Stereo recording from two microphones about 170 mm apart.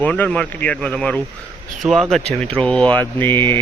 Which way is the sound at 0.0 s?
5° left (ahead or behind).